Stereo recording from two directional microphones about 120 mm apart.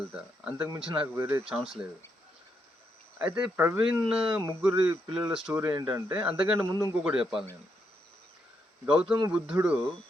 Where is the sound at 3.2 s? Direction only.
10° right (ahead or behind).